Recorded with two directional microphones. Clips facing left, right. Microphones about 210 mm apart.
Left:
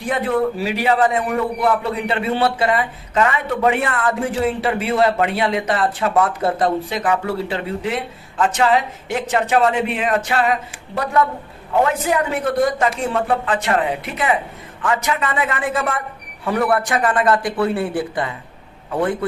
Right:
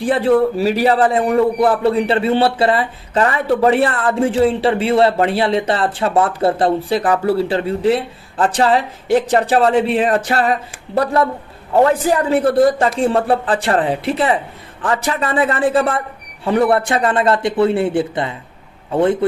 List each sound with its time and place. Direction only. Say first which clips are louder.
0.0 s a man's voice: right 5 dB; 30° right (ahead or behind)